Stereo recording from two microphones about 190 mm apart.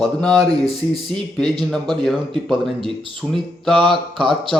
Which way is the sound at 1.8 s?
25° right (ahead or behind).